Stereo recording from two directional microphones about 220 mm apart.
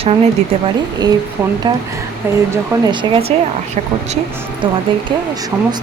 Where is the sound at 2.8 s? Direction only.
20° right (ahead or behind).